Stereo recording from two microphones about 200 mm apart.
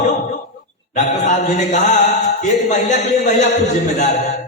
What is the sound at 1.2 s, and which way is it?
Speech, 35° left (ahead or behind).